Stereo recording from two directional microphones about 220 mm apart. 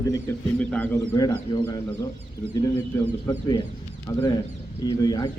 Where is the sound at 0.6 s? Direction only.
5° left (ahead or behind).